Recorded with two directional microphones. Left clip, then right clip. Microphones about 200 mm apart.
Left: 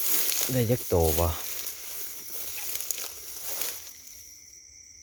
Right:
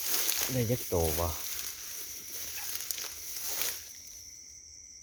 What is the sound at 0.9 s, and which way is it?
Speech, 40° left (ahead or behind).